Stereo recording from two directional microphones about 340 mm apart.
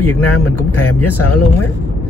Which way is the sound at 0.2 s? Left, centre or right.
Left.